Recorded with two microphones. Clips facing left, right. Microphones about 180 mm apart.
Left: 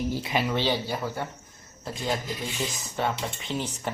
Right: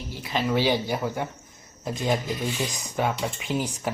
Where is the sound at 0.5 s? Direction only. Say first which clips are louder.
Right 3 dB; 10° right (ahead or behind).